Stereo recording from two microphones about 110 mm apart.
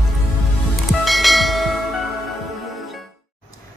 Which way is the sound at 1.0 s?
Centre (ahead or behind).